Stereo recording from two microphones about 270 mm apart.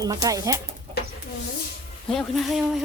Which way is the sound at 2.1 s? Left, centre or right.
Centre.